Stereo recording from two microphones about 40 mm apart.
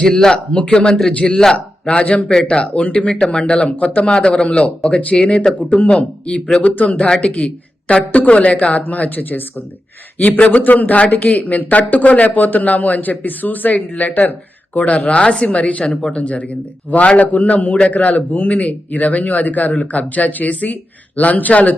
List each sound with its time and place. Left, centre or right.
0.0 s speech: centre
1.2 s speech: centre
1.9 s speech: left
5.1 s speech: left
8.7 s a man's voice: left
10.2 s a man's voice: left
13.7 s speech: left
14.1 s a man's voice: left
14.7 s speech: left
15.8 s speech: centre
16.1 s speech: left